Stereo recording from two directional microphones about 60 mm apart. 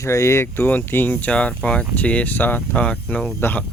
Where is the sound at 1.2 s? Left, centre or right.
Centre.